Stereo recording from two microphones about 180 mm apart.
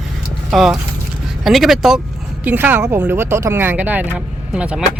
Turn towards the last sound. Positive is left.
turn(degrees=-5)  # may be behind; listen again after turning